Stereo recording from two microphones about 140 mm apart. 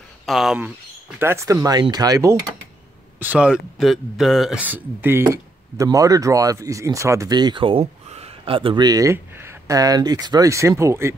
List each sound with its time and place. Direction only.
0.3 s speech: centre (ahead or behind)
1.2 s speech: 20° right (ahead or behind)
3.2 s speech: 10° right (ahead or behind)